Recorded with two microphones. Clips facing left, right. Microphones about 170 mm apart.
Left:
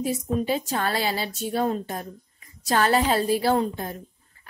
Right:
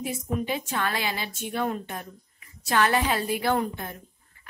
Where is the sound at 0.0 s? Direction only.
35° left (ahead or behind).